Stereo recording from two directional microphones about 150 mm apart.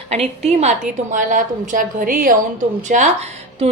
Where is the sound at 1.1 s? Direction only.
60° right (ahead or behind).